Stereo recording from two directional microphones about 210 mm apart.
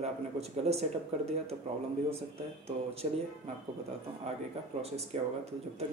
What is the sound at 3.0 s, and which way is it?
Speech, 30° right (ahead or behind).